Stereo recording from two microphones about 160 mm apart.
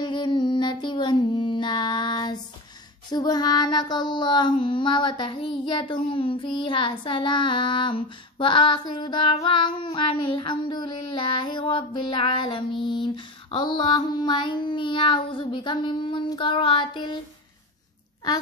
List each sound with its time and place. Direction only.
0.0 s child singing: 30° left (ahead or behind)